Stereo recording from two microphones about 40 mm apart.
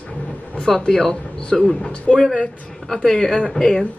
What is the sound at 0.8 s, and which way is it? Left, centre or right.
Speech, centre.